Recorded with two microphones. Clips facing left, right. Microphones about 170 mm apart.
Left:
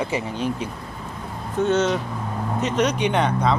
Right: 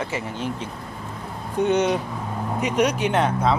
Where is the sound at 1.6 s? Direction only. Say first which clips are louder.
Even; 15° right (ahead or behind).